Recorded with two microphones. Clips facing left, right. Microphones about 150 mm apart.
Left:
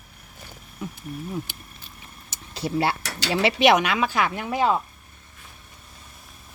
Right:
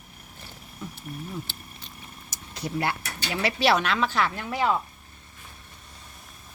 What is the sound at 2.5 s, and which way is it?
Speech, 30° left (ahead or behind).